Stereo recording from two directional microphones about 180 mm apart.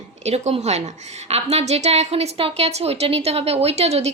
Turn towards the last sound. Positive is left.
turn(degrees=-35)  # may be behind; listen again after turning